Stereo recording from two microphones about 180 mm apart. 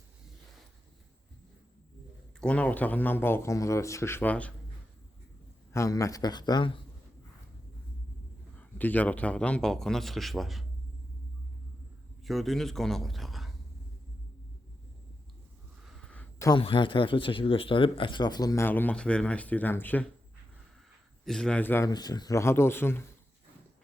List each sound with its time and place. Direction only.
2.4 s speech: 5° left (ahead or behind)
5.7 s speech: 15° left (ahead or behind)
8.5 s a man's voice: 10° left (ahead or behind)
12.2 s speech: centre (ahead or behind)
15.8 s a sound: 5° left (ahead or behind)
16.5 s speech: 30° left (ahead or behind); by 20.1 s 10° left (ahead or behind)
21.2 s speech: 5° left (ahead or behind)
21.8 s speech: 20° left (ahead or behind)